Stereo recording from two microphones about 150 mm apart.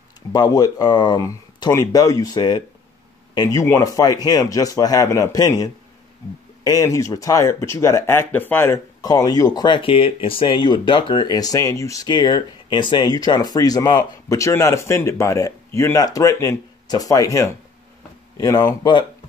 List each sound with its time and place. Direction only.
0.3 s speech: 25° left (ahead or behind)